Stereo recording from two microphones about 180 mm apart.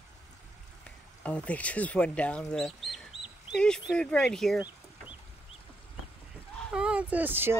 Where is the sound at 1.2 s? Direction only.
5° left (ahead or behind).